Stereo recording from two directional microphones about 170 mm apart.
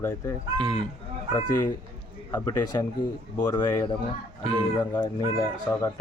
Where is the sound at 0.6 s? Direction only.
5° left (ahead or behind).